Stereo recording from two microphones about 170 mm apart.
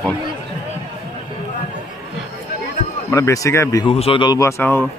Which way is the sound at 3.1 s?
20° left (ahead or behind).